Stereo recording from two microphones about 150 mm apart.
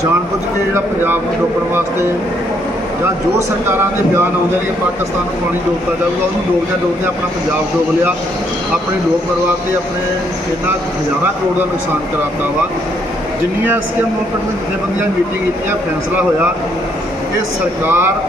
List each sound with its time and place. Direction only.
17.8 s speech: 15° right (ahead or behind)